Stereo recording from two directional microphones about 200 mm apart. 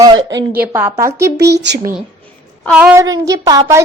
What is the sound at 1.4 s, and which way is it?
Speech, 60° right (ahead or behind).